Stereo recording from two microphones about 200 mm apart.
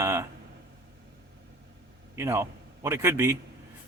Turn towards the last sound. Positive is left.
turn(degrees=-15)  # may be behind; listen again after turning